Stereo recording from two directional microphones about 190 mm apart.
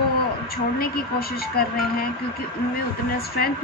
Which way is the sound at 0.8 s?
50° left (ahead or behind).